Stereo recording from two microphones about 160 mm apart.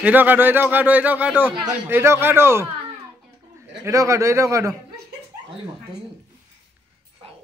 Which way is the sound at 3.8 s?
20° right (ahead or behind).